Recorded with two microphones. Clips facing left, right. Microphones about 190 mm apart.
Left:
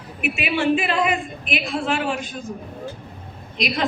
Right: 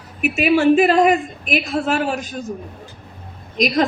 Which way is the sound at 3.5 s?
40° right (ahead or behind).